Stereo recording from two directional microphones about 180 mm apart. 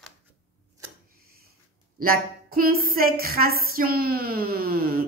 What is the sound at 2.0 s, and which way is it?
A woman's voice, 55° right (ahead or behind).